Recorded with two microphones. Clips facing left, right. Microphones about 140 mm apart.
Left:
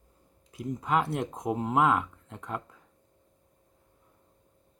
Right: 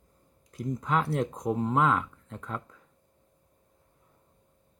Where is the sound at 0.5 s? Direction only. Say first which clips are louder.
Left 1 dB; 5° left (ahead or behind).